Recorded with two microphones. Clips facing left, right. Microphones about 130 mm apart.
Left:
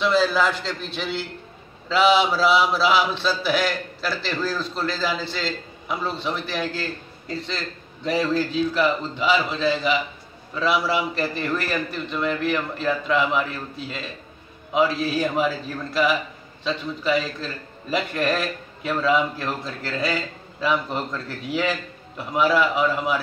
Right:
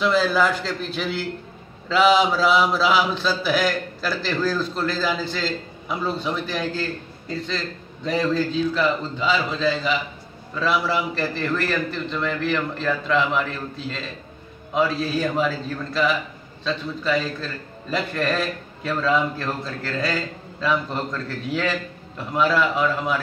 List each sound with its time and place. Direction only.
0.0 s a man's voice: centre (ahead or behind)